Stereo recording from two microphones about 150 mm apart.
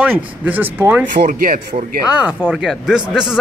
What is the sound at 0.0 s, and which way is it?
Speech, 10° right (ahead or behind).